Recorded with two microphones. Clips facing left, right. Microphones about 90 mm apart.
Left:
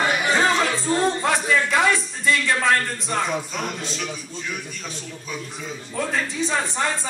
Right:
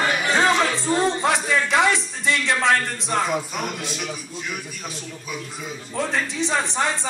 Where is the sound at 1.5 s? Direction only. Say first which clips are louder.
Left 1 dB; 20° right (ahead or behind).